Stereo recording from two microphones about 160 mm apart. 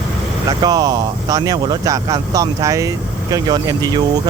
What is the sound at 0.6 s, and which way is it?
Speech, 25° right (ahead or behind).